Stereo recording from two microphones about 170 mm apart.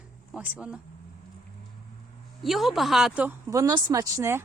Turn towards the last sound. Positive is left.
turn(degrees=-20)  # may be behind; listen again after turning